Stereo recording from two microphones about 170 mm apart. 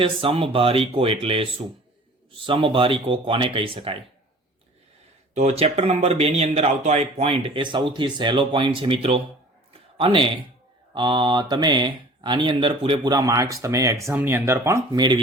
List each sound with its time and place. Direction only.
0.0 s speech: 30° right (ahead or behind)
5.3 s speech: 40° right (ahead or behind)
9.7 s a sound: 30° right (ahead or behind)
10.9 s speech: 25° right (ahead or behind)